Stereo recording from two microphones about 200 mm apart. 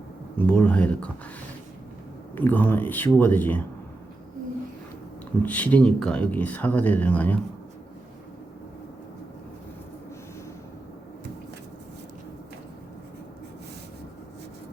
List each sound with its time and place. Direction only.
0.3 s speech: 5° left (ahead or behind)
2.3 s speech: 10° left (ahead or behind)
5.4 s speech: 5° left (ahead or behind)